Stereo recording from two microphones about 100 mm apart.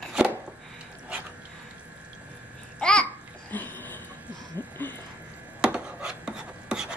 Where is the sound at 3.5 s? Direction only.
20° left (ahead or behind).